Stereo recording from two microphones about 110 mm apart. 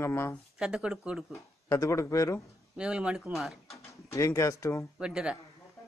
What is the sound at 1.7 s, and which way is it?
Speech, 25° left (ahead or behind).